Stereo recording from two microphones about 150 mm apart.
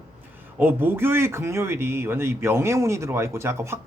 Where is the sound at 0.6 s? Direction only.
15° right (ahead or behind).